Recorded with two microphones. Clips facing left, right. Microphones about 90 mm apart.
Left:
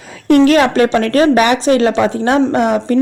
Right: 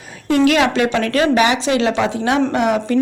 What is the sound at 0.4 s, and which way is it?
Speech, 45° left (ahead or behind).